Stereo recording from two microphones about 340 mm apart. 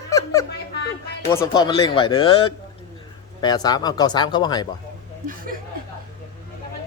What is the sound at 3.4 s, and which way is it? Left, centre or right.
Speech, centre.